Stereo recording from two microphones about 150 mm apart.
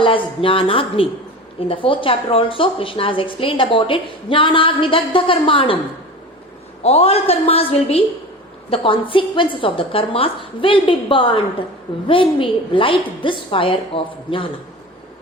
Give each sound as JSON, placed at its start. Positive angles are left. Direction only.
{"t": 0.0, "sound": "a woman's voice", "side_deg": 35}
{"t": 6.8, "sound": "a woman's voice", "side_deg": 45}